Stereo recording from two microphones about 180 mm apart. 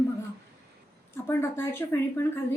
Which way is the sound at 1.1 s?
15° left (ahead or behind).